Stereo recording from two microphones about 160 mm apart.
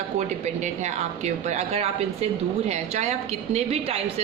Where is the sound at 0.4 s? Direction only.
45° right (ahead or behind).